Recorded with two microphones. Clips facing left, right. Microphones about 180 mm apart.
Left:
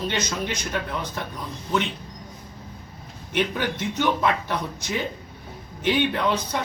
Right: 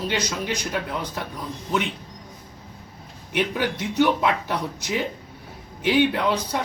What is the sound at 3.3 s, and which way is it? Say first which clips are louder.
Speech: right 1 dB; 10° right (ahead or behind).